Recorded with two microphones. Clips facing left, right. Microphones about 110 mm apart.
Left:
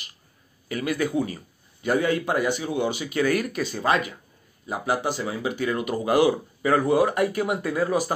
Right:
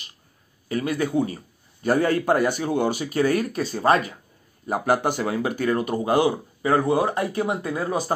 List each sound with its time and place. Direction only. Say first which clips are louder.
0.7 s a man's voice: right 1 dB; 30° right (ahead or behind)
4.6 s speech: right 4 dB; 50° right (ahead or behind)
5.8 s speech: left 2 dB; 30° right (ahead or behind)